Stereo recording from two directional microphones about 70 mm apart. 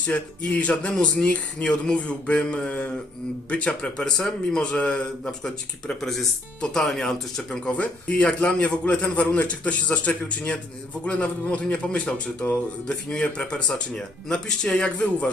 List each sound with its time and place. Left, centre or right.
0.1 s speech: centre
6.0 s speech: centre